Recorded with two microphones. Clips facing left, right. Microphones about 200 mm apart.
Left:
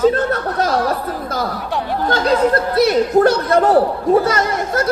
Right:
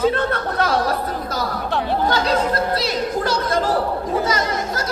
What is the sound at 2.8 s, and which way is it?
Speech, 60° left (ahead or behind).